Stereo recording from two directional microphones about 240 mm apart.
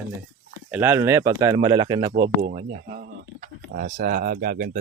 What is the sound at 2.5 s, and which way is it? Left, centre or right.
Speech, right.